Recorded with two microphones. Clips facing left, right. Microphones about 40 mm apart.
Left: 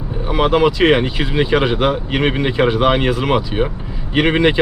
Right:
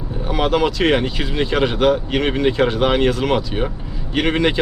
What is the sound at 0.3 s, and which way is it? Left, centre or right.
Speech, centre.